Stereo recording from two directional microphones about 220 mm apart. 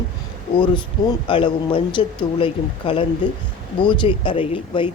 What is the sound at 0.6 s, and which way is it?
Speech, 20° left (ahead or behind).